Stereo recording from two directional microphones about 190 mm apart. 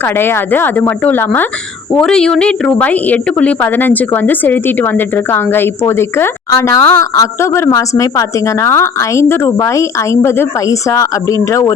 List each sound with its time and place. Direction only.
0.0 s a woman's voice: 10° left (ahead or behind)